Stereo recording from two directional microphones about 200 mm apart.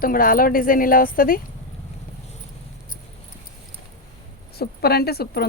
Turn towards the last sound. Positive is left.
turn(degrees=50)  # may be behind; listen again after turning